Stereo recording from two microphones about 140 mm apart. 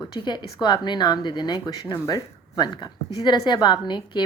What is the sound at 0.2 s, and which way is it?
Speech, 30° left (ahead or behind).